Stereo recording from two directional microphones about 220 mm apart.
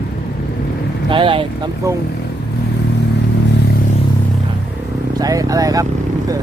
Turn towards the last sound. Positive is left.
turn(degrees=-15)  # may be behind; listen again after turning